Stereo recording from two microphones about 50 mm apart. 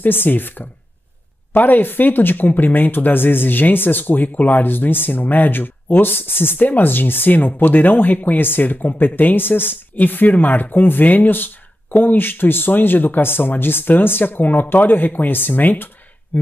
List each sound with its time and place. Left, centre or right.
0.0 s speech: left